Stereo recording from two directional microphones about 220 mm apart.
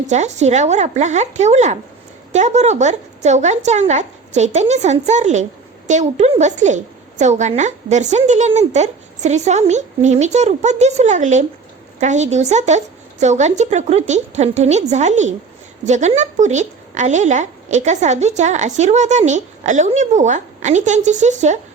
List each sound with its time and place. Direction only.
0.1 s speech: 30° right (ahead or behind)